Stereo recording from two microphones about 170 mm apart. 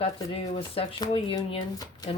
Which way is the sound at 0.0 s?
35° left (ahead or behind).